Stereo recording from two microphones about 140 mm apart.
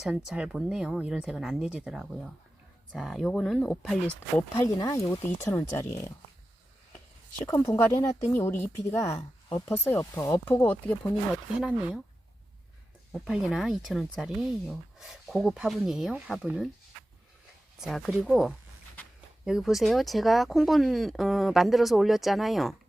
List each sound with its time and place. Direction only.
0.0 s speech: 5° right (ahead or behind)
4.6 s speech: 20° left (ahead or behind)
7.4 s speech: 25° left (ahead or behind)
11.6 s speech: 5° right (ahead or behind)
13.2 s speech: 5° right (ahead or behind)
17.7 s speech: centre (ahead or behind)